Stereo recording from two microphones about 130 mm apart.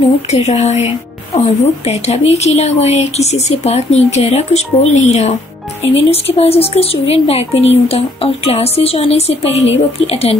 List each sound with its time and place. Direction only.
0.3 s a woman's voice: 55° left (ahead or behind)